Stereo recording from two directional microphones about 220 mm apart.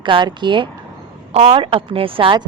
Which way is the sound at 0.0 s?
20° right (ahead or behind).